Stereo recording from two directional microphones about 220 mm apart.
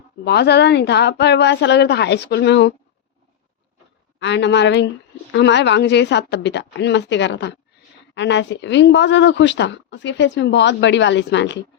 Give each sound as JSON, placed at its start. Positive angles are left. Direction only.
{"t": 0.3, "sound": "speech", "side_deg": 50}
{"t": 4.2, "sound": "speech", "side_deg": 55}